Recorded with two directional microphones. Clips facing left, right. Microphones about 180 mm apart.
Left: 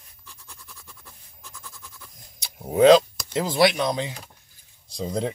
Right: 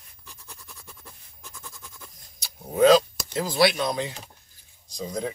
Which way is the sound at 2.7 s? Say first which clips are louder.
Left 3 dB; 20° left (ahead or behind).